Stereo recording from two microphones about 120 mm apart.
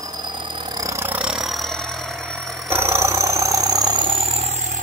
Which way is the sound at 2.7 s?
20° right (ahead or behind).